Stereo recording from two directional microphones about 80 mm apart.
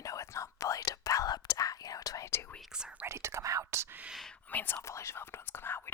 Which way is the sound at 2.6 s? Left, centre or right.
Centre.